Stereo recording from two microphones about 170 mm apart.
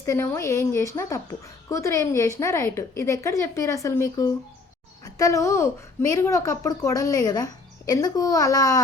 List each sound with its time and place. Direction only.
0.0 s a woman's voice: 15° left (ahead or behind)